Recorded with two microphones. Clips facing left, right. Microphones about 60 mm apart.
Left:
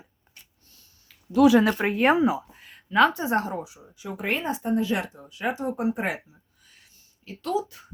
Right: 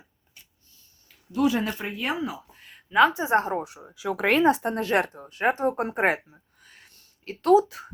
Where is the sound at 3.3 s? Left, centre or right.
Right.